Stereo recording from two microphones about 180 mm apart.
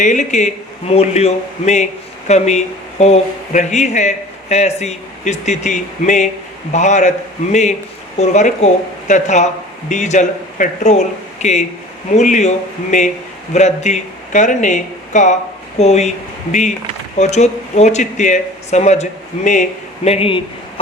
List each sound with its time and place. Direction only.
0.0 s a man's voice: 45° left (ahead or behind)
20.1 s a man's voice: 30° left (ahead or behind)